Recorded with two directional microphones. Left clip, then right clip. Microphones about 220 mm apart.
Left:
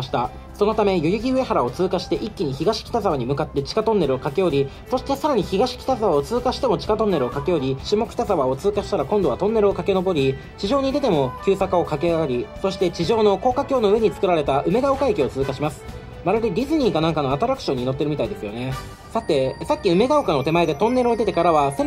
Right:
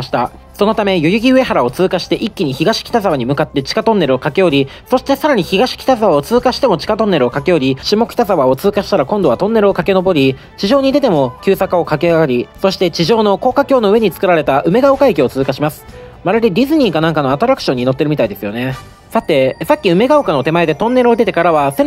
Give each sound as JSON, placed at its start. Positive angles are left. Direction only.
{"t": 0.1, "sound": "speech", "side_deg": -20}